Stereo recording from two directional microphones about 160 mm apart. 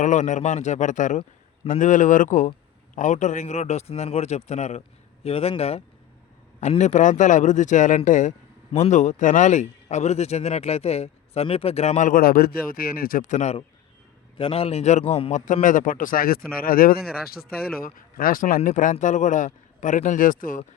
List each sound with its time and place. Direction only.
0.0 s a man's voice: 50° left (ahead or behind)